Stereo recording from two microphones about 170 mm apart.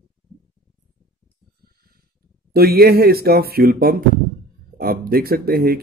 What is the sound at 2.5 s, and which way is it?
Speech, 65° right (ahead or behind).